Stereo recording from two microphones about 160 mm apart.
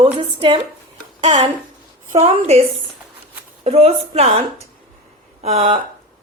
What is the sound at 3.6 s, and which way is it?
A woman's voice, 40° right (ahead or behind).